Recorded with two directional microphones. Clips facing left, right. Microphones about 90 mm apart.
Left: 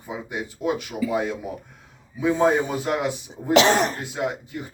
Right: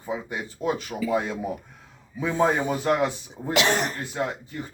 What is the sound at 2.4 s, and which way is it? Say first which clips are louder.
Speech: even; 15° left (ahead or behind).